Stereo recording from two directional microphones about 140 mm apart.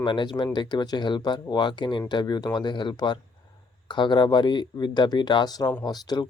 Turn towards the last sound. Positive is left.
turn(degrees=30)  # may be behind; listen again after turning